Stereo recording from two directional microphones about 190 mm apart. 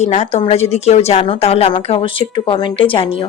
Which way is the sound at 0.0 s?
35° left (ahead or behind).